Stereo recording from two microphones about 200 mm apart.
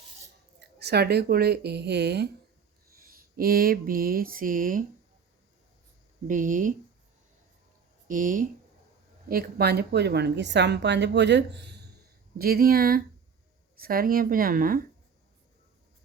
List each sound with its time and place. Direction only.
0.6 s speech: 55° right (ahead or behind)
2.9 s a sound: 45° right (ahead or behind)
6.2 s speech: 40° right (ahead or behind)
8.0 s a woman's voice: 40° right (ahead or behind); by 11.8 s 60° right (ahead or behind)
12.4 s speech: 50° right (ahead or behind)